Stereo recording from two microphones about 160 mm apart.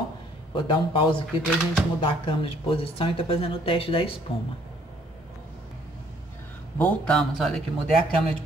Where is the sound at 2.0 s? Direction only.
30° left (ahead or behind).